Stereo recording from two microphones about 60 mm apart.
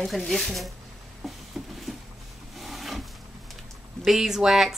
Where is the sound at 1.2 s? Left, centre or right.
Centre.